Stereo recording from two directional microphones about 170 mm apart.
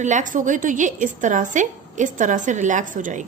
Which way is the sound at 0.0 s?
45° right (ahead or behind).